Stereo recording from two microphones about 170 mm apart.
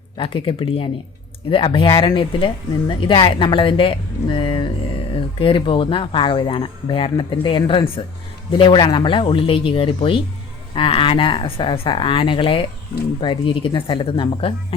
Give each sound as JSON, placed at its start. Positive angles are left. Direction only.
{"t": 0.2, "sound": "speech", "side_deg": 30}